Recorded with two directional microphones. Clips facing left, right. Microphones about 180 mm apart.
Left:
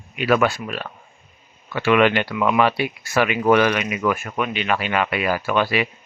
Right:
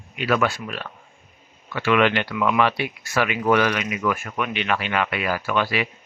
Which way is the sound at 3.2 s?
20° left (ahead or behind).